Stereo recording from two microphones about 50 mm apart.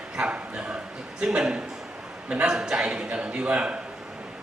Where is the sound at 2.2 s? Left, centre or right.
Right.